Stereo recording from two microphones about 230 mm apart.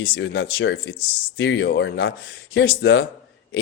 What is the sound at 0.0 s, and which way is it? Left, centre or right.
A man's voice, left.